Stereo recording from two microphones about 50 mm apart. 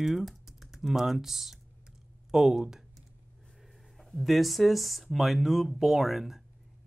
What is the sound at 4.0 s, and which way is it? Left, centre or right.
Speech, centre.